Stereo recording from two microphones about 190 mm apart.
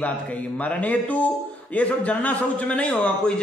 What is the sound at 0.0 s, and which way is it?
A man's voice, 10° left (ahead or behind).